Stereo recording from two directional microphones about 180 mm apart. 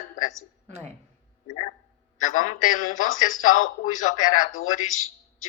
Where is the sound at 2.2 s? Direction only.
45° left (ahead or behind).